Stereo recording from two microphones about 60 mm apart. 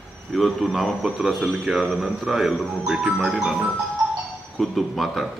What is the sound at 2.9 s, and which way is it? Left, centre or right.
Speech, centre.